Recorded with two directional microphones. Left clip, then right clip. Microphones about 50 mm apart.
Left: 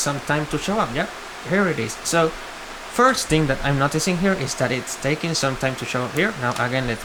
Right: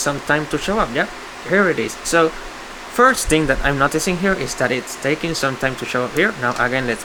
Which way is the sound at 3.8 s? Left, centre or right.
Right.